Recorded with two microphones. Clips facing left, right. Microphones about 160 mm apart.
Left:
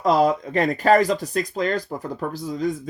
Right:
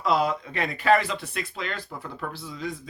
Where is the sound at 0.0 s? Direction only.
45° left (ahead or behind).